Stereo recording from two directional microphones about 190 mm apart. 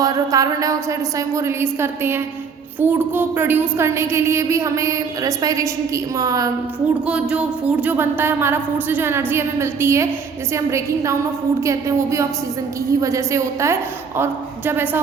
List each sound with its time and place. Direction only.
0.0 s a woman's voice: 20° right (ahead or behind)
7.1 s a woman's voice: 5° right (ahead or behind)